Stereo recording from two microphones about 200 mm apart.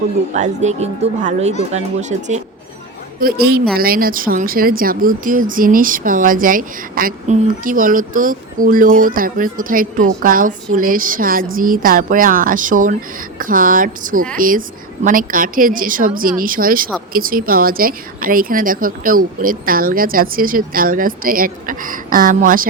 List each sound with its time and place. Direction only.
0.3 s speech: 35° right (ahead or behind)
3.2 s speech: 50° right (ahead or behind)